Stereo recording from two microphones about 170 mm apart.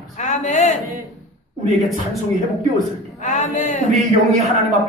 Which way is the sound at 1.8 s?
Centre (ahead or behind).